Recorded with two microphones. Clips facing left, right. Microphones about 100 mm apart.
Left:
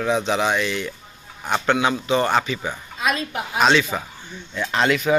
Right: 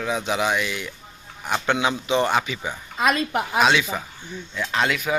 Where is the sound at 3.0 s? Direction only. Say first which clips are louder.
Right 3 dB; 55° right (ahead or behind).